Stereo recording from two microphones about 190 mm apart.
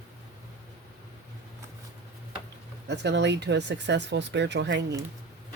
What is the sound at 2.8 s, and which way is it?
Speech, 65° right (ahead or behind).